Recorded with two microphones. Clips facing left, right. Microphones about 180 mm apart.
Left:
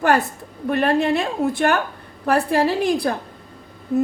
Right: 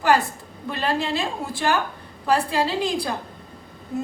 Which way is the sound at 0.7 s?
60° left (ahead or behind).